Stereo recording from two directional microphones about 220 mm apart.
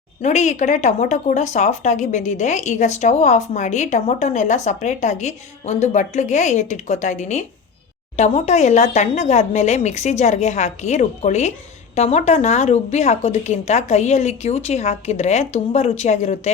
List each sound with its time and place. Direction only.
0.2 s a woman's voice: 30° left (ahead or behind)